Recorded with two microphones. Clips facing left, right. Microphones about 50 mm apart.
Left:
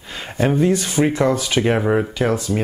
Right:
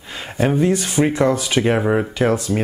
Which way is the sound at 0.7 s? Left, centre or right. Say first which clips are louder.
Even; centre.